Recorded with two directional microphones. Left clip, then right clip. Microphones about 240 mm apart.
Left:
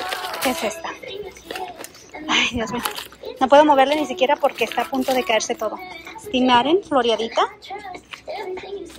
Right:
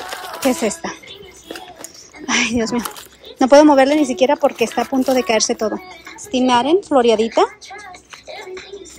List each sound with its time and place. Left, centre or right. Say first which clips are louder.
0.0 s music: right 2 dB; centre
2.2 s speech: right 2 dB; centre